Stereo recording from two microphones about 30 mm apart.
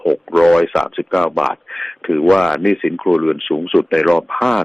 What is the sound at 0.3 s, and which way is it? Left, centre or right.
Speech, centre.